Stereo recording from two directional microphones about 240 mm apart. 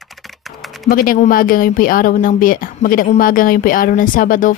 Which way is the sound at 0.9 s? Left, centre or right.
Left.